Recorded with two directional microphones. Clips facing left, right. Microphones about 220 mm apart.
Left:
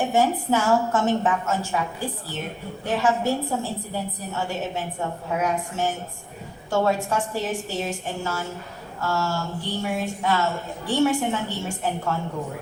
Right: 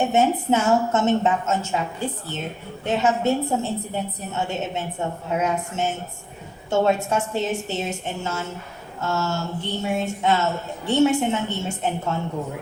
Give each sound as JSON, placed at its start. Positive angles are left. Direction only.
{"t": 0.0, "sound": "a woman's voice", "side_deg": -25}